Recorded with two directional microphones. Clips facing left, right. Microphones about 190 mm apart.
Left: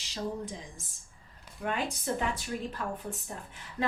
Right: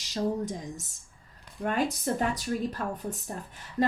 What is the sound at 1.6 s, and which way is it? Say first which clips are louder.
A woman's voice: right 4 dB; 40° right (ahead or behind).